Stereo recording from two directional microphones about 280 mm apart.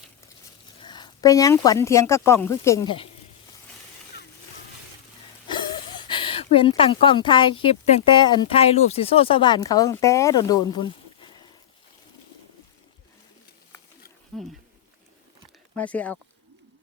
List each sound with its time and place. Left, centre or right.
0.8 s speech: centre
5.5 s speech: centre
14.3 s a sound: centre
15.7 s speech: centre